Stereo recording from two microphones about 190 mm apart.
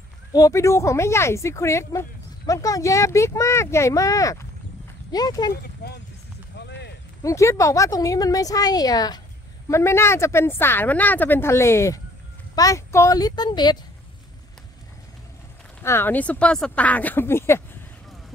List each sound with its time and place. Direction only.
0.3 s a woman's voice: 15° left (ahead or behind)
7.2 s a woman's voice: 15° left (ahead or behind)
15.8 s speech: 10° left (ahead or behind)